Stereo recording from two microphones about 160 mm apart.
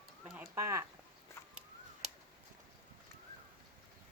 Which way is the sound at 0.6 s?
20° right (ahead or behind).